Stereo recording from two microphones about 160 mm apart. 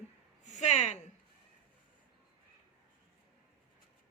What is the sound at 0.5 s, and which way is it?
Speech, 45° left (ahead or behind).